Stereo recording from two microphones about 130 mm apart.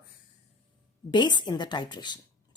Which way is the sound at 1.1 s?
35° left (ahead or behind).